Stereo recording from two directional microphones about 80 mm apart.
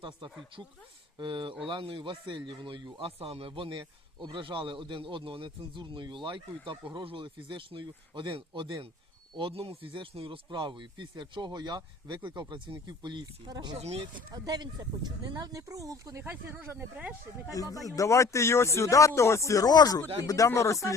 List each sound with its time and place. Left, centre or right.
1.2 s a man's voice: right
16.2 s speech: right
17.5 s a man's voice: left